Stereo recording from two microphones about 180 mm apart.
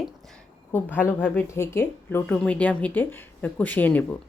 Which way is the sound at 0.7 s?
10° left (ahead or behind).